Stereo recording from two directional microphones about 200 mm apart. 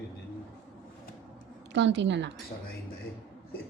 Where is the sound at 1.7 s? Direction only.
65° right (ahead or behind).